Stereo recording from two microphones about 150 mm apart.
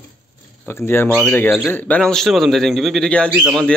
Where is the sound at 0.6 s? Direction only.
15° left (ahead or behind).